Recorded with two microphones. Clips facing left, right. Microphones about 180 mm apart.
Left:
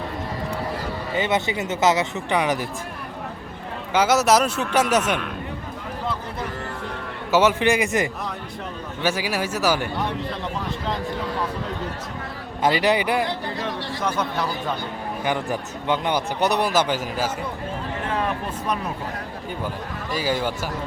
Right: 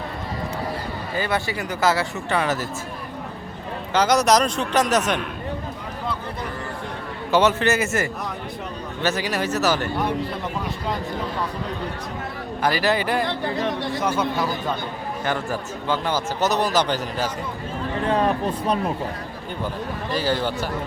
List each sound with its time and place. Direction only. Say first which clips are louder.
1.1 s speech: left 2 dB; 20° left (ahead or behind)
3.9 s speech: even; 5° left (ahead or behind)
7.3 s speech: even; 10° left (ahead or behind)
12.6 s speech: left 2 dB; 20° left (ahead or behind)
13.6 s speech: right 4 dB; 20° right (ahead or behind)
14.0 s speech: right 1 dB; 5° right (ahead or behind)
15.2 s speech: left 1 dB; 15° left (ahead or behind)
18.1 s speech: right 6 dB; 35° right (ahead or behind)
20.1 s speech: right 1 dB; 10° left (ahead or behind)